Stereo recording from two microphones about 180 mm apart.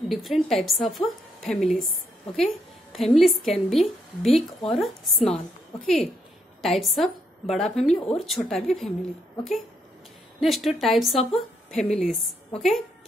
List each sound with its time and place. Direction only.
0.1 s a woman's voice: centre (ahead or behind)
6.6 s a woman's voice: centre (ahead or behind)
10.4 s a woman's voice: centre (ahead or behind)